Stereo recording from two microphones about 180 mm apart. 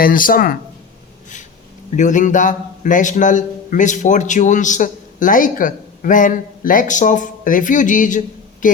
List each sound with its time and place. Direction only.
0.0 s a man's voice: 50° left (ahead or behind)
2.0 s a man's voice: 45° left (ahead or behind)
8.6 s a sound: 45° left (ahead or behind)